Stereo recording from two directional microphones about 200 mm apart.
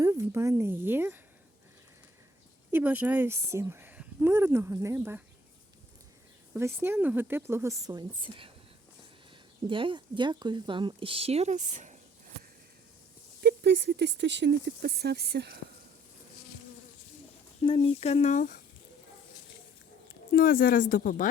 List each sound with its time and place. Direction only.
0.0 s a woman's voice: 15° right (ahead or behind)
2.7 s speech: 10° right (ahead or behind)
6.5 s speech: 15° right (ahead or behind)
9.6 s speech: 25° right (ahead or behind)
13.4 s speech: 55° right (ahead or behind)
17.6 s speech: 30° left (ahead or behind)
20.3 s a woman's voice: 45° left (ahead or behind)